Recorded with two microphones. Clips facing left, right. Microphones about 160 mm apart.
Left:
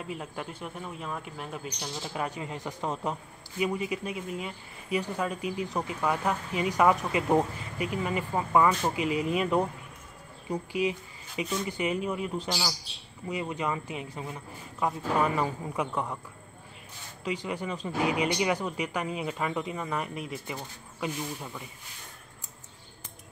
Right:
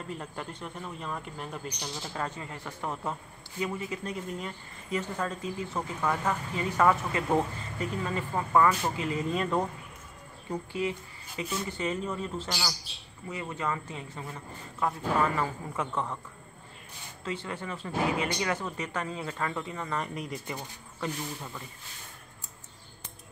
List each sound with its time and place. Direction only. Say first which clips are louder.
0.0 s a man's voice: left 1 dB; 5° left (ahead or behind)
17.2 s a man's voice: left 3 dB; 15° left (ahead or behind)